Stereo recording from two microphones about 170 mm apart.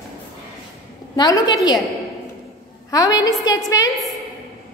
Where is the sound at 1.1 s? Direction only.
25° left (ahead or behind).